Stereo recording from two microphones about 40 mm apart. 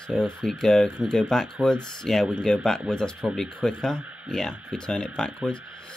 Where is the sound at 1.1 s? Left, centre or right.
Centre.